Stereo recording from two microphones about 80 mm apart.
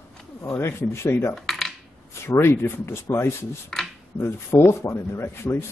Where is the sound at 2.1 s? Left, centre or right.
Left.